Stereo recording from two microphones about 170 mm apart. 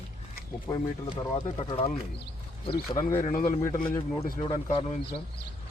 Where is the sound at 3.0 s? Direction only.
50° left (ahead or behind).